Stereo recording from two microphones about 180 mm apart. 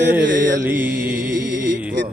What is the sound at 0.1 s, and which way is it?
Mantra, 10° right (ahead or behind).